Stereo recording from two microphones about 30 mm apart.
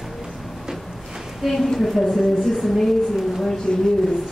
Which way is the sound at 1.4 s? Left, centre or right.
Centre.